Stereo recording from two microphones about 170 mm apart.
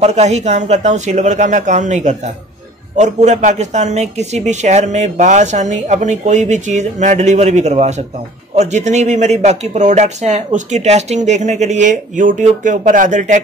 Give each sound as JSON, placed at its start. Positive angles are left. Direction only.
{"t": 0.0, "sound": "speech", "side_deg": -40}